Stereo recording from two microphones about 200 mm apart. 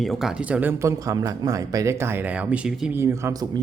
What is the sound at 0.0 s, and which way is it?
Speech, centre (ahead or behind).